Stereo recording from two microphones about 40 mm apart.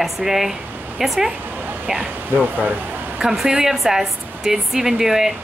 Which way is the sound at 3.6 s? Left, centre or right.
Centre.